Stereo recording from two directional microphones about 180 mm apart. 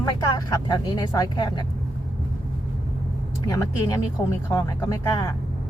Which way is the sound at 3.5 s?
20° left (ahead or behind).